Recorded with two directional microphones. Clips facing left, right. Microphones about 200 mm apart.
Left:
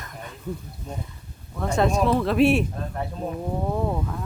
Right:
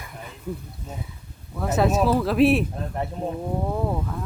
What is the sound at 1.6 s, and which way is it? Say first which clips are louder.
Speech: right 1 dB; 5° right (ahead or behind).